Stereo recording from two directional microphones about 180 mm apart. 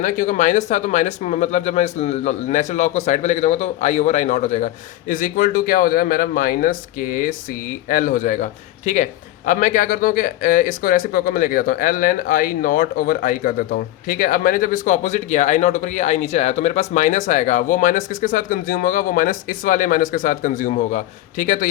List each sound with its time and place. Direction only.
0.0 s speech: 45° left (ahead or behind)